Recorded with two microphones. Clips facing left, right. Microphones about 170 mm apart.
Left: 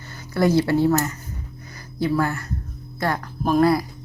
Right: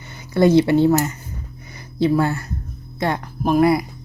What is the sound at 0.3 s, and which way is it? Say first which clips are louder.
A woman's voice: right 4 dB; 20° right (ahead or behind).